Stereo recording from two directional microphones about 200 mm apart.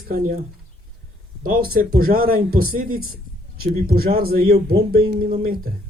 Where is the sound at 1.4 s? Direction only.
45° right (ahead or behind).